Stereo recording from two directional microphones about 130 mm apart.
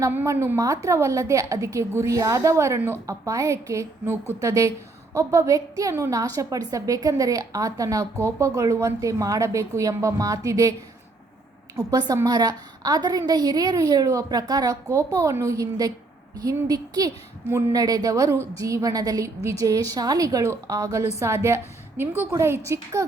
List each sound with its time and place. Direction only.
0.0 s a woman's voice: 20° right (ahead or behind)
11.9 s a woman's voice: 30° right (ahead or behind)